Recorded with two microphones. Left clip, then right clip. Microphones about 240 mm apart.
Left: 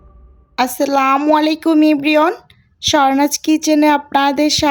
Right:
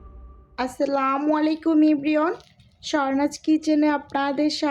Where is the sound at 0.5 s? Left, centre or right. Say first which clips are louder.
Left 9 dB; left.